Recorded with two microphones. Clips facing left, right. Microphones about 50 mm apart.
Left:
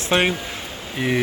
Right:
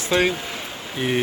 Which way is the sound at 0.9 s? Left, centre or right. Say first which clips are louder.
Left 1 dB; left.